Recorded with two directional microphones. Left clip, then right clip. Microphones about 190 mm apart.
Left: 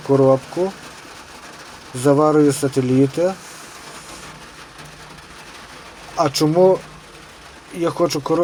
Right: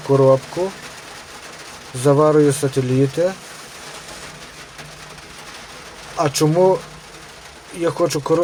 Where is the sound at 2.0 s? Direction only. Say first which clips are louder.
Right 1 dB; 5° right (ahead or behind).